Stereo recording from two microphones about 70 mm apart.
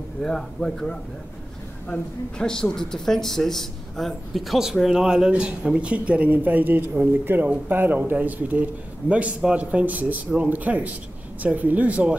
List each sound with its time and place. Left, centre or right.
0.2 s a man's voice: centre; by 12.2 s right